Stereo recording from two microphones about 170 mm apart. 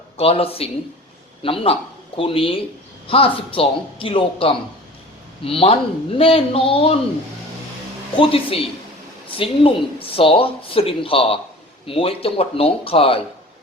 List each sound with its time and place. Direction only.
0.2 s a man's voice: 35° left (ahead or behind)
8.1 s speech: 30° left (ahead or behind)
10.2 s speech: 30° left (ahead or behind)